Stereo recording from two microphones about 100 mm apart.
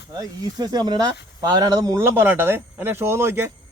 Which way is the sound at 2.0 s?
25° right (ahead or behind).